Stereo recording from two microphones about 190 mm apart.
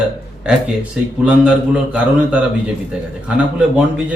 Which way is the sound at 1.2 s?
5° right (ahead or behind).